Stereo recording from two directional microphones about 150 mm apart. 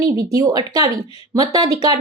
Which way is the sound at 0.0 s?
25° right (ahead or behind).